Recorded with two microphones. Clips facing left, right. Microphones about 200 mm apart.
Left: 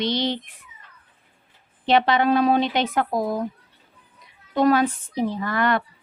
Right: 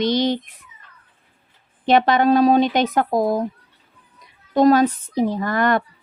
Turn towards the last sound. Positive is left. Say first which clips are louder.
# right 3 dB
turn(degrees=-45)  # may be behind; listen again after turning